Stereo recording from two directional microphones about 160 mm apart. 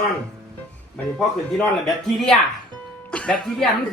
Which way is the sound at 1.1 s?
Centre (ahead or behind).